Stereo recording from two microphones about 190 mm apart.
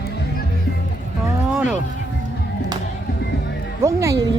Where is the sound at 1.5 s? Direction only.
5° right (ahead or behind).